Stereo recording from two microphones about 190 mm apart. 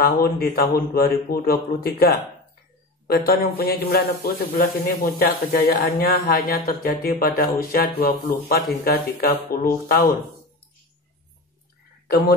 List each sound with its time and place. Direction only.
0.0 s a man's voice: 50° left (ahead or behind)